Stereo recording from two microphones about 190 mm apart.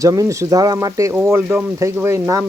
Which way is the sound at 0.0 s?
15° right (ahead or behind).